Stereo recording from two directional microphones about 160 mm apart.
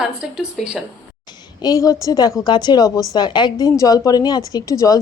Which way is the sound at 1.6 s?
20° left (ahead or behind).